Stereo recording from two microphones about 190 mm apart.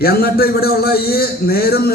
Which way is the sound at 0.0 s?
55° left (ahead or behind).